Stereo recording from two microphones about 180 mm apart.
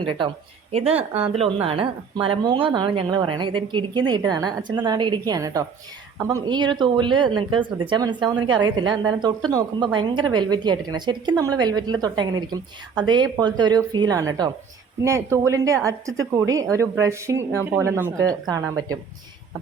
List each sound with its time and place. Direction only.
0.0 s a woman's voice: 30° right (ahead or behind)